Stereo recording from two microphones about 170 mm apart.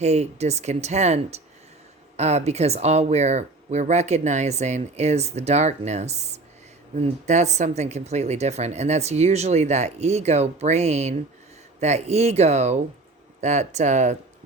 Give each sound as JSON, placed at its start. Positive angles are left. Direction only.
{"t": 0.0, "sound": "speech", "side_deg": -40}